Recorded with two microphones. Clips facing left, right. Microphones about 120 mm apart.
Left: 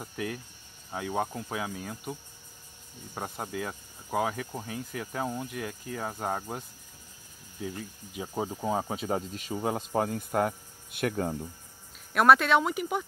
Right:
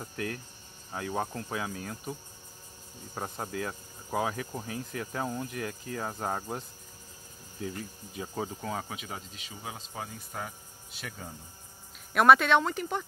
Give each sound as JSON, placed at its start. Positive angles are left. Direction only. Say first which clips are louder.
{"t": 0.0, "sound": "cricket", "louder": "left 1 dB", "side_deg": 10}
{"t": 0.9, "sound": "speech", "louder": "left 2 dB", "side_deg": 5}
{"t": 3.2, "sound": "speech", "louder": "even", "side_deg": 5}
{"t": 7.7, "sound": "speech", "louder": "even", "side_deg": 15}
{"t": 12.1, "sound": "speech", "louder": "even", "side_deg": 0}